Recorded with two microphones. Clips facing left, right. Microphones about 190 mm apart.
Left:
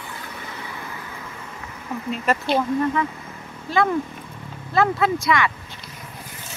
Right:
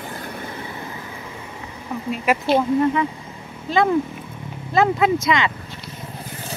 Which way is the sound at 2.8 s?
20° right (ahead or behind).